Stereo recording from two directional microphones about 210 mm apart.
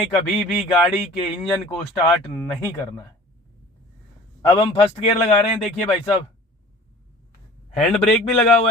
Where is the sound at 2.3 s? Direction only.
10° left (ahead or behind).